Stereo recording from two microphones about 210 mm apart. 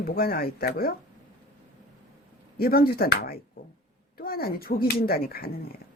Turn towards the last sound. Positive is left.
turn(degrees=45)  # may be behind; listen again after turning